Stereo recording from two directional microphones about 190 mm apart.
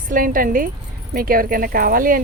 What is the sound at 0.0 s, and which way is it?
Speech, 45° right (ahead or behind).